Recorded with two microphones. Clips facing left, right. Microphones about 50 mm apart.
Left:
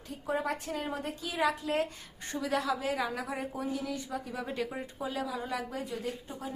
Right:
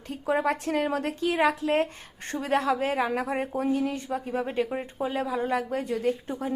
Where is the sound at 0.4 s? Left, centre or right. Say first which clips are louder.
Right 8 dB; right.